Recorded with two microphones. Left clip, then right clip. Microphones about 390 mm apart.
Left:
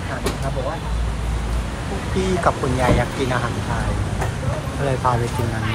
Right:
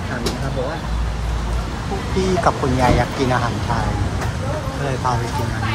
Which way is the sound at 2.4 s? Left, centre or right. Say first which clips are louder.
Right 2 dB; centre.